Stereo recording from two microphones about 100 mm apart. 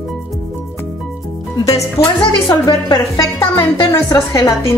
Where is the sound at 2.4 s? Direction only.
45° left (ahead or behind).